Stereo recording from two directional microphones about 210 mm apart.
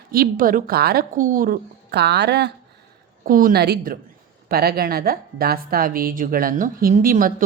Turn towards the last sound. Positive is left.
turn(degrees=-40)  # may be behind; listen again after turning